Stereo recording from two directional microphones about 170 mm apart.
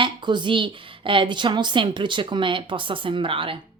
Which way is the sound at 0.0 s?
30° right (ahead or behind).